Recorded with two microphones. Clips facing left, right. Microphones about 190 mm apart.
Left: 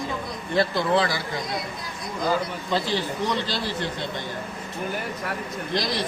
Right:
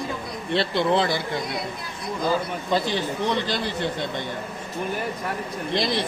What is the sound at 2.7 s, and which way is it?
Speech, 20° right (ahead or behind).